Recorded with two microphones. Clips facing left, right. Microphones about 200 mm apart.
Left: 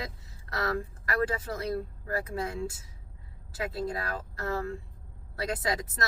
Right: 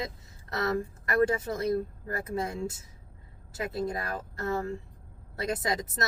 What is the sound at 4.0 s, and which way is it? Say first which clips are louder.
Speech: right 1 dB; 20° right (ahead or behind).